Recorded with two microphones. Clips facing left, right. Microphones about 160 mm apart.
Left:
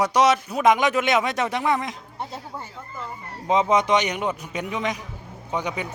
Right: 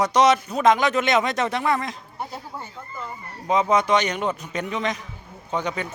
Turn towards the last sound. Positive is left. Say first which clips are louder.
# right 1 dB
turn(degrees=10)  # may be behind; listen again after turning